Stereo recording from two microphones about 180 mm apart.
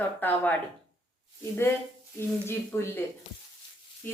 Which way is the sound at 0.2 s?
10° left (ahead or behind).